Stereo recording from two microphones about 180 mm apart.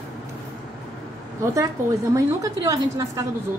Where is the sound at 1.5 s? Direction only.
15° right (ahead or behind).